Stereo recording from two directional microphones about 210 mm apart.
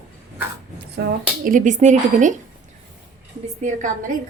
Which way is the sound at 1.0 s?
55° right (ahead or behind).